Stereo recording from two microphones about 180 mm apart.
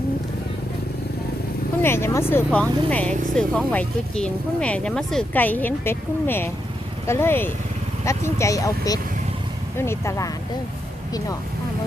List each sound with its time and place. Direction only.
1.8 s speech: 15° left (ahead or behind)